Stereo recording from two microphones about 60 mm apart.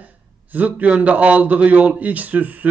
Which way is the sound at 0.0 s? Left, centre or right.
Right.